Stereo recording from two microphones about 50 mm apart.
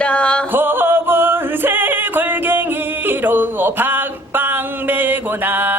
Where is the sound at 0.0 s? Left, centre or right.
Left.